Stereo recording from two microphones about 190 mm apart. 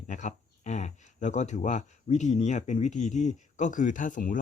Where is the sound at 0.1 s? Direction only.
40° left (ahead or behind).